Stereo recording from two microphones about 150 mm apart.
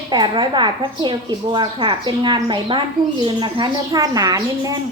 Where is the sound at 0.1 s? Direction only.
30° right (ahead or behind).